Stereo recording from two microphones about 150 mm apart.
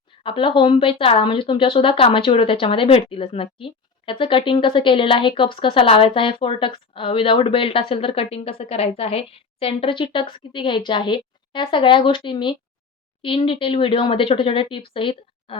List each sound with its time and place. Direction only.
0.2 s a woman's voice: 35° left (ahead or behind)